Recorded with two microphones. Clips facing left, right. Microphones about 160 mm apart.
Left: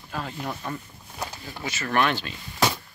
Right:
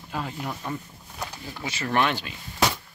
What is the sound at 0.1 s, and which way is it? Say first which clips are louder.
Speech: right 1 dB; 10° right (ahead or behind).